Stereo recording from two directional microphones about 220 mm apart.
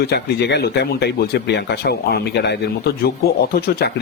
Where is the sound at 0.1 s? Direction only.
50° left (ahead or behind).